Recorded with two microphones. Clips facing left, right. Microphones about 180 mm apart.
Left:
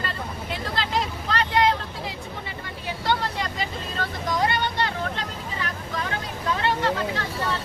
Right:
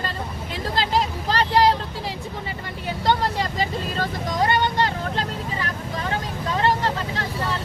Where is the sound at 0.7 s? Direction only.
35° right (ahead or behind).